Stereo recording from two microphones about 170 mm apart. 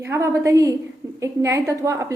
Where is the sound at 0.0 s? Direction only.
15° right (ahead or behind).